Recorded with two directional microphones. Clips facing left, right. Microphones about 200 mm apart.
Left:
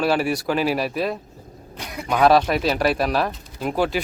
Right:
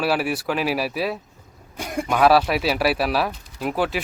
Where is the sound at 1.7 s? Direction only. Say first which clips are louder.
Right 7 dB; 50° right (ahead or behind).